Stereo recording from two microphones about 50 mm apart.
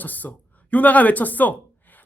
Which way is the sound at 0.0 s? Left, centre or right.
Left.